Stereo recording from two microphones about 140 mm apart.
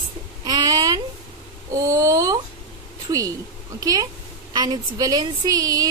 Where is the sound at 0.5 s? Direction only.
30° right (ahead or behind).